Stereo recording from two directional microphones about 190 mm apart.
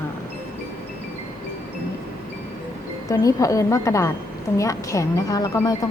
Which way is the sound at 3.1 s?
15° left (ahead or behind).